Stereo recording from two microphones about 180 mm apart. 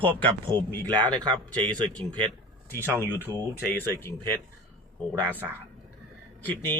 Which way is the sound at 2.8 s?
10° right (ahead or behind).